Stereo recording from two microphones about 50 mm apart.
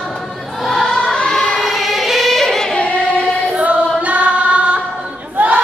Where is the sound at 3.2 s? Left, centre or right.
Right.